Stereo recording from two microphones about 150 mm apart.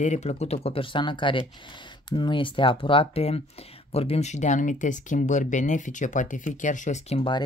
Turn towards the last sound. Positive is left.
turn(degrees=45)  # may be behind; listen again after turning